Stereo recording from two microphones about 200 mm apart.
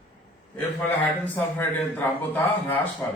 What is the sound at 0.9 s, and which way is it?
A man's voice, 10° left (ahead or behind).